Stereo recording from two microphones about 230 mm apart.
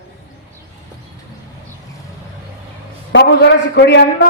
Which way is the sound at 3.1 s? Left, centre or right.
Left.